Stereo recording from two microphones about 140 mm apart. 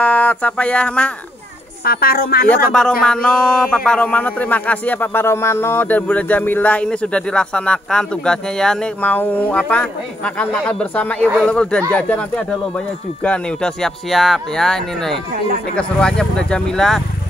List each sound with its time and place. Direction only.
0.0 s speech: 10° left (ahead or behind)
1.9 s speech: 90° left
3.0 s speech: 5° left (ahead or behind)